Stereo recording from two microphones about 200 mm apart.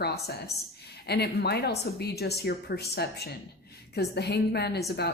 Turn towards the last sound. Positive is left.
turn(degrees=55)  # may be behind; listen again after turning